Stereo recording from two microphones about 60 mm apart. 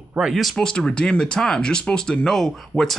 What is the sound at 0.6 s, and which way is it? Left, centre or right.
Speech, centre.